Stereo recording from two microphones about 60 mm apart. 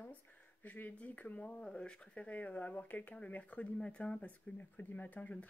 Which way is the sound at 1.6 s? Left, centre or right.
Centre.